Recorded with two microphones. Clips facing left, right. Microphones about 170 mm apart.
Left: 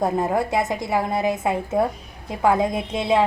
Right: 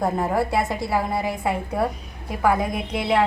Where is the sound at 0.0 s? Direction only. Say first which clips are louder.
Left 1 dB; 20° left (ahead or behind).